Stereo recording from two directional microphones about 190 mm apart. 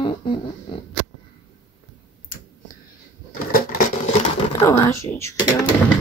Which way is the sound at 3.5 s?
50° left (ahead or behind).